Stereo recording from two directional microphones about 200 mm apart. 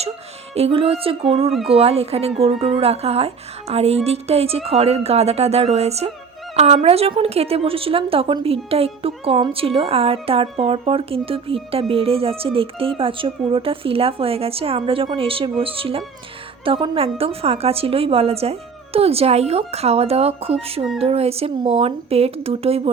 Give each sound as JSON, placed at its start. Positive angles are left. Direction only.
{"t": 0.5, "sound": "a woman's voice", "side_deg": -30}